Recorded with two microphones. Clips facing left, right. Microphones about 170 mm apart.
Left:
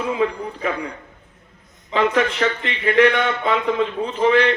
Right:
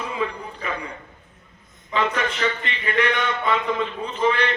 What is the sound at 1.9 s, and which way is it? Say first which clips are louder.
Speech: left 5 dB; 65° left (ahead or behind).